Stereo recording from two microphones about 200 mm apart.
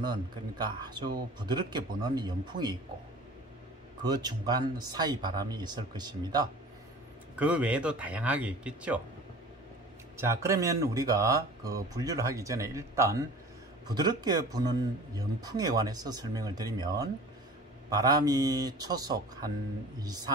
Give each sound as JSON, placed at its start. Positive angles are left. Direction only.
{"t": 0.0, "sound": "speech", "side_deg": -20}
{"t": 4.0, "sound": "speech", "side_deg": -20}
{"t": 7.3, "sound": "speech", "side_deg": -5}
{"t": 10.1, "sound": "speech", "side_deg": -15}